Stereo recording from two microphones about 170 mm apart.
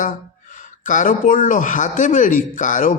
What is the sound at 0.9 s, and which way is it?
A man's voice, 50° left (ahead or behind).